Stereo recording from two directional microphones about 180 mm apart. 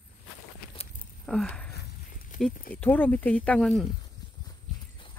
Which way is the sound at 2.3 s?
45° left (ahead or behind).